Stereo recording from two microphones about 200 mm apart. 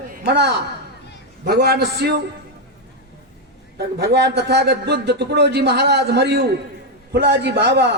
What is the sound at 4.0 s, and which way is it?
A man's voice, 55° right (ahead or behind).